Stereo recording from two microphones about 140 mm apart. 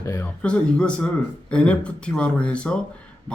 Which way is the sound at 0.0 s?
20° left (ahead or behind).